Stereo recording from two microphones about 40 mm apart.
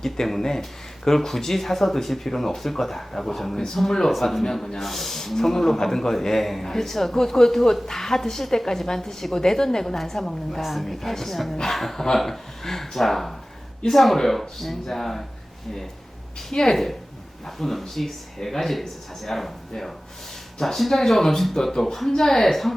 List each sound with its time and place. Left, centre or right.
0.0 s a man's voice: centre
16.5 s a man's voice: centre
17.4 s a man's voice: centre